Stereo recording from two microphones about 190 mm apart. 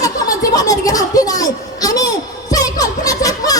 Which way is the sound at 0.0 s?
20° left (ahead or behind).